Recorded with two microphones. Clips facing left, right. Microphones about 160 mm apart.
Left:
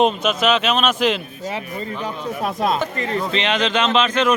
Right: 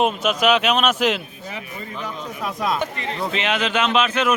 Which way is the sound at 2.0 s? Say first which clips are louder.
Left 4 dB; 30° left (ahead or behind).